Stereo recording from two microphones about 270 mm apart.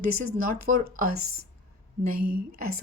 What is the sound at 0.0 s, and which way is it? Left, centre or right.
A woman's voice, right.